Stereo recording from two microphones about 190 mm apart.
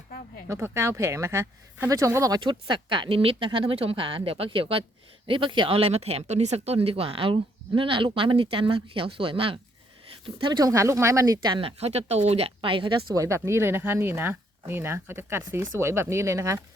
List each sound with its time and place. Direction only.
0.4 s speech: 15° right (ahead or behind)